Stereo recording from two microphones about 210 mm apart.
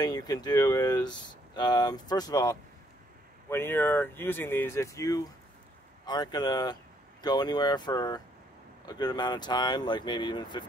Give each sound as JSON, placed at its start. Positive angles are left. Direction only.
{"t": 0.0, "sound": "speech", "side_deg": 20}